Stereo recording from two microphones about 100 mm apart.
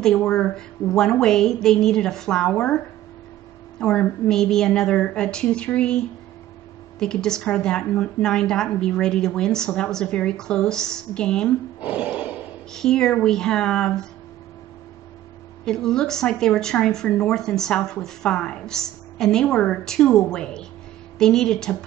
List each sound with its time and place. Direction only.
0.0 s a woman's voice: 5° left (ahead or behind)
3.8 s speech: 10° left (ahead or behind)
11.8 s a sound: 15° right (ahead or behind)
12.7 s speech: 5° left (ahead or behind)
15.6 s a woman's voice: 5° left (ahead or behind)